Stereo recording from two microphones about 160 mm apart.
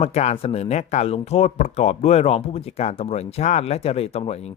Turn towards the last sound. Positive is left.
turn(degrees=40)  # may be behind; listen again after turning